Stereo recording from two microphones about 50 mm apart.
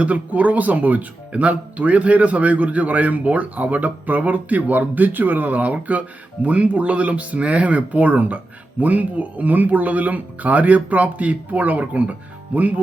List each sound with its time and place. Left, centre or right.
0.0 s speech: right